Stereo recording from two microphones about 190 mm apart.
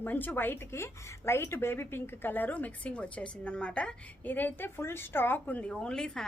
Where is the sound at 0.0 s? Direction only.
10° left (ahead or behind).